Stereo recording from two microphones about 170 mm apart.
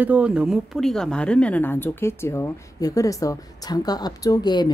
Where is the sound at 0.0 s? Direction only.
10° right (ahead or behind).